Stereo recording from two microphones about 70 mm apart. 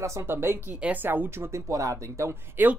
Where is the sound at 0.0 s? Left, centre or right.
Right.